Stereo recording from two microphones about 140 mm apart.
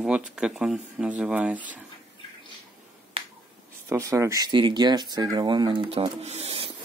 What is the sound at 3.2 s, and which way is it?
Finger snapping, 45° right (ahead or behind).